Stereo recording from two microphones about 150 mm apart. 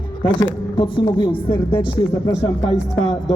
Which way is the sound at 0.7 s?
35° left (ahead or behind).